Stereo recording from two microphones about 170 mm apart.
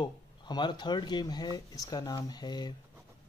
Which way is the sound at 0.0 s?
25° left (ahead or behind).